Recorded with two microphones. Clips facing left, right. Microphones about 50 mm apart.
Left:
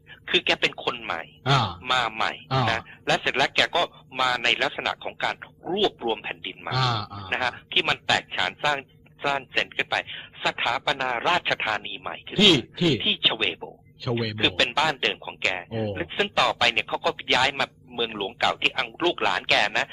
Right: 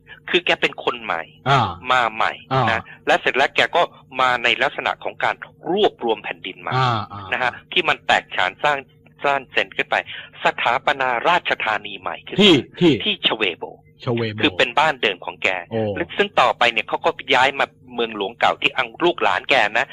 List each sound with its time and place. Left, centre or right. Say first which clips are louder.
0.3 s a man's voice: right 5 dB; right